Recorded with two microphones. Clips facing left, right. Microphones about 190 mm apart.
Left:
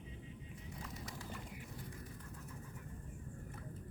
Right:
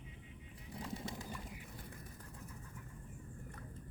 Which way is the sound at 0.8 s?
25° right (ahead or behind).